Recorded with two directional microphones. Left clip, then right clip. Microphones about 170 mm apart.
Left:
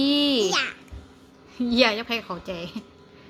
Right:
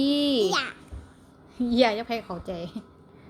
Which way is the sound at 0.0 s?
15° left (ahead or behind).